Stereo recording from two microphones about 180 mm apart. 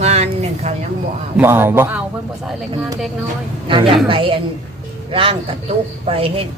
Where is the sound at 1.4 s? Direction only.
10° right (ahead or behind).